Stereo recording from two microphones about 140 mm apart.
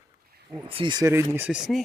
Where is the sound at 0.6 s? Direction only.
40° right (ahead or behind).